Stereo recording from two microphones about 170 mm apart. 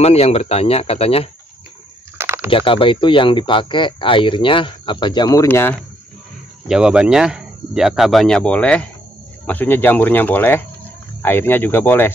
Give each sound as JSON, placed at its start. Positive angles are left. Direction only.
{"t": 0.0, "sound": "speech", "side_deg": 35}
{"t": 2.1, "sound": "a sound", "side_deg": -15}
{"t": 2.5, "sound": "speech", "side_deg": 30}
{"t": 6.7, "sound": "speech", "side_deg": -5}